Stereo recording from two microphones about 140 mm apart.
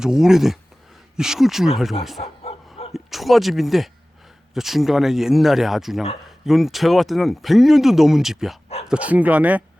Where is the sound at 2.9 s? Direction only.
Centre (ahead or behind).